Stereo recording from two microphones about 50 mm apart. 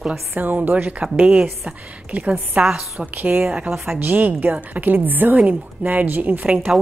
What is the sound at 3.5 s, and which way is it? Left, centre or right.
Speech, right.